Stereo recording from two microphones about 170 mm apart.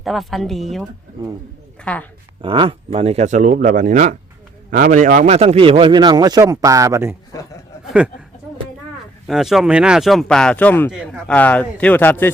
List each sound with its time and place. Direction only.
0.0 s speech: centre (ahead or behind)
2.4 s a man's voice: 30° right (ahead or behind); by 7.2 s 15° right (ahead or behind)
9.2 s speech: centre (ahead or behind)